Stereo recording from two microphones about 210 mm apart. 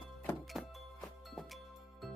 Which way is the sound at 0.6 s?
Centre (ahead or behind).